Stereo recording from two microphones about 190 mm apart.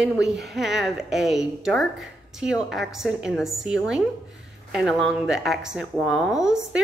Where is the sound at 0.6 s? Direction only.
Centre (ahead or behind).